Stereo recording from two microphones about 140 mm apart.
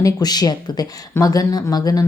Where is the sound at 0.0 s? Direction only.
30° left (ahead or behind).